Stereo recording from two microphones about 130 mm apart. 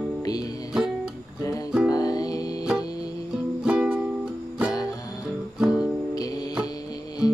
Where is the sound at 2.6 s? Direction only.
5° right (ahead or behind).